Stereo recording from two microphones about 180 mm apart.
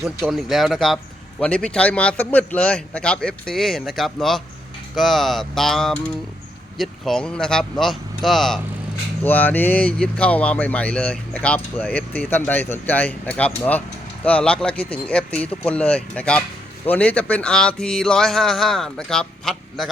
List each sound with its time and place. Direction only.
0.0 s speech: centre (ahead or behind)